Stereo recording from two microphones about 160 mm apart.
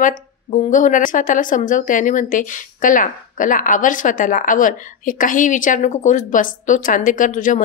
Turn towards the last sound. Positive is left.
turn(degrees=55)  # may be behind; listen again after turning